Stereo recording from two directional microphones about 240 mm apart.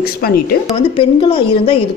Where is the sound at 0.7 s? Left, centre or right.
Left.